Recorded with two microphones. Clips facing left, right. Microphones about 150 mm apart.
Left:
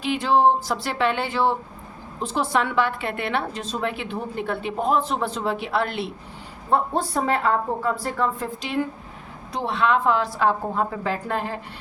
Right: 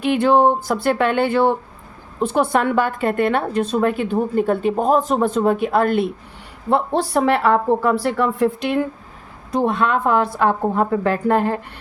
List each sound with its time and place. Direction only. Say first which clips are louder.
0.0 s a woman's voice: right 4 dB; 55° right (ahead or behind)
6.7 s speech: right 4 dB; 75° right (ahead or behind)
9.5 s a woman's voice: right 4 dB; 50° right (ahead or behind)